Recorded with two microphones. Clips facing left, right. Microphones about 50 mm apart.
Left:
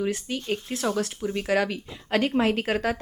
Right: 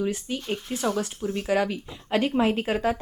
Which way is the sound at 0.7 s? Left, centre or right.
Centre.